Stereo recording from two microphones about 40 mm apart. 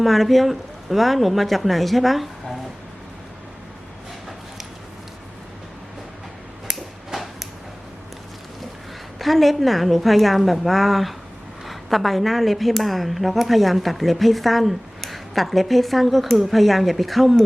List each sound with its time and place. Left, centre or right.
0.0 s speech: centre
6.7 s a sound: centre
9.1 s speech: centre